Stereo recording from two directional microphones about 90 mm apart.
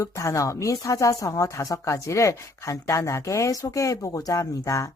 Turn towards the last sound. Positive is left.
turn(degrees=35)  # may be behind; listen again after turning